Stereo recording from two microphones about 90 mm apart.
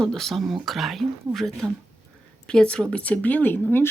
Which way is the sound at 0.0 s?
5° left (ahead or behind).